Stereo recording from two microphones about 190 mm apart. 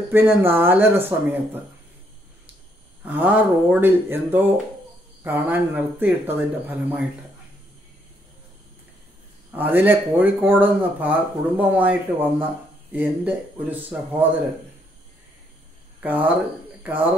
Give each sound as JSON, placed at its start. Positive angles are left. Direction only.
{"t": 0.1, "sound": "speech", "side_deg": -10}
{"t": 3.1, "sound": "speech", "side_deg": -10}
{"t": 9.5, "sound": "speech", "side_deg": -10}
{"t": 16.0, "sound": "speech", "side_deg": -10}